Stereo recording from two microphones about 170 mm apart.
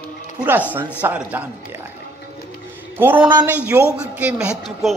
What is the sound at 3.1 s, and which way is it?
Speech, 25° right (ahead or behind).